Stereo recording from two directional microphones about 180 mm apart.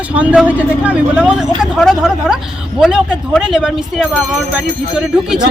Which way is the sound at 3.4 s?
5° right (ahead or behind).